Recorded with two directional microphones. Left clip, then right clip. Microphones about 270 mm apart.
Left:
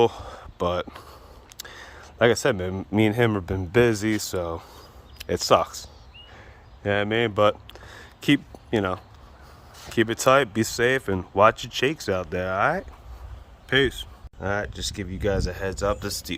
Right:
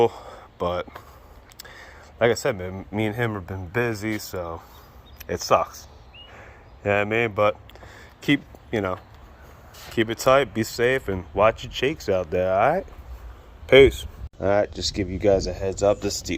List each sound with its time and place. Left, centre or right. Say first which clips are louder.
0.0 s speech: even; centre
1.5 s a sound: left 2 dB; centre
2.9 s speech: left 5 dB; left
6.3 s a sound: right 3 dB; centre
9.9 s speech: even; centre
14.4 s speech: right 6 dB; centre